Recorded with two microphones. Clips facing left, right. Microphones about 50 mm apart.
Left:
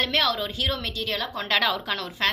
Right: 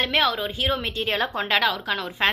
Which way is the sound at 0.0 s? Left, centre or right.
Centre.